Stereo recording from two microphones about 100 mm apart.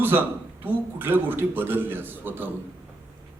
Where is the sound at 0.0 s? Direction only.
20° right (ahead or behind).